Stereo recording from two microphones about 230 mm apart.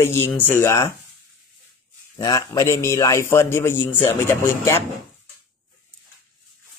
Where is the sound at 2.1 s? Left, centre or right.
Centre.